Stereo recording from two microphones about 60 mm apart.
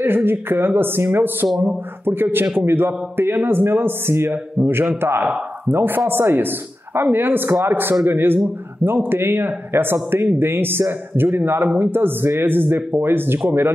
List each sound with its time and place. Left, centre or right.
0.0 s speech: right